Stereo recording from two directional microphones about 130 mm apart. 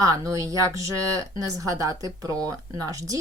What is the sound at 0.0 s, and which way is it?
Speech, 25° right (ahead or behind).